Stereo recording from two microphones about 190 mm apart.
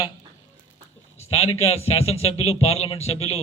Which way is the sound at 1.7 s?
30° left (ahead or behind).